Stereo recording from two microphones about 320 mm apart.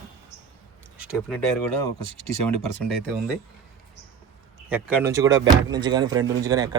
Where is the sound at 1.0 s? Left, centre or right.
Centre.